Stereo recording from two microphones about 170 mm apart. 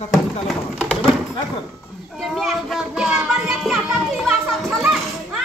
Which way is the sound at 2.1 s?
Centre (ahead or behind).